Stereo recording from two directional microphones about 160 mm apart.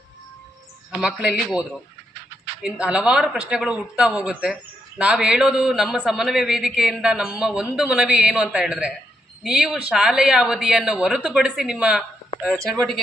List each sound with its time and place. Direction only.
0.9 s a man's voice: 5° right (ahead or behind)
2.6 s a man's voice: 5° right (ahead or behind)